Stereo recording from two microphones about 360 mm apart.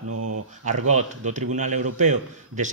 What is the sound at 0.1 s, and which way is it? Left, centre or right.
Mantra, right.